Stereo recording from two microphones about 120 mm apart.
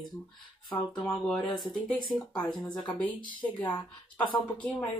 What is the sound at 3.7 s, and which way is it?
Speech, 40° left (ahead or behind).